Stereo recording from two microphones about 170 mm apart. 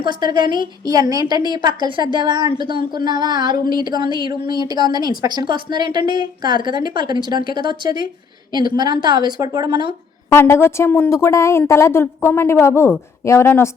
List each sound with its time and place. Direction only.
0.1 s a woman's voice: 25° right (ahead or behind)
10.3 s a woman's voice: 15° left (ahead or behind)